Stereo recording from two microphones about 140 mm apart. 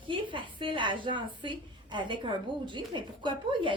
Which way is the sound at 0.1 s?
35° right (ahead or behind).